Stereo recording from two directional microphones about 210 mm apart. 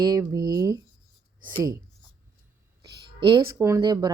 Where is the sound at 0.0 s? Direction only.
15° right (ahead or behind).